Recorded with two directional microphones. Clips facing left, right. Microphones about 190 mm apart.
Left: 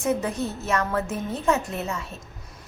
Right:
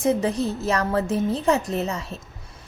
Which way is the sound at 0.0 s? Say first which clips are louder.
Right 4 dB; 35° right (ahead or behind).